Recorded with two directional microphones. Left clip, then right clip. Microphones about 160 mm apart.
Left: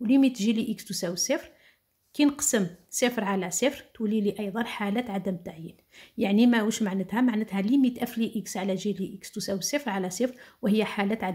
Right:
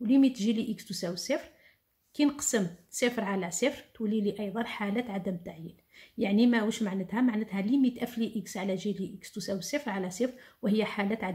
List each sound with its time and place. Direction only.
0.0 s speech: 35° left (ahead or behind)